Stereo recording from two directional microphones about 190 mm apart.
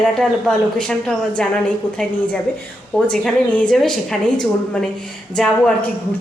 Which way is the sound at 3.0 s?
Centre (ahead or behind).